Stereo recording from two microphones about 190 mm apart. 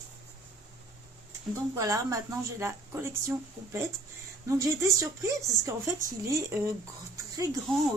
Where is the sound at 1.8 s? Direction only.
20° right (ahead or behind).